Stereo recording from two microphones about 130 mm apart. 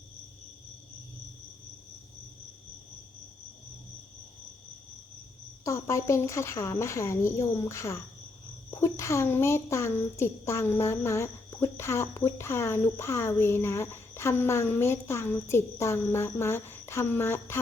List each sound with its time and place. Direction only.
5.6 s a woman's voice: 20° left (ahead or behind)